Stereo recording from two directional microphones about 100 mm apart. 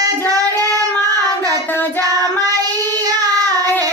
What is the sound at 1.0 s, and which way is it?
Child singing, 40° right (ahead or behind).